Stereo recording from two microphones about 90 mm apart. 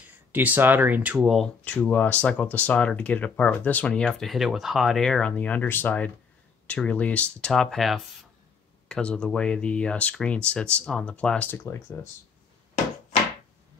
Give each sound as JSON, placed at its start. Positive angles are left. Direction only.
{"t": 0.3, "sound": "speech", "side_deg": -20}
{"t": 1.2, "sound": "speech", "side_deg": 0}
{"t": 1.6, "sound": "speech", "side_deg": 15}
{"t": 11.5, "sound": "speech", "side_deg": 25}